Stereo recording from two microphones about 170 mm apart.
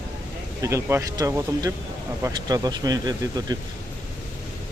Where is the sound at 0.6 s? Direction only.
15° right (ahead or behind).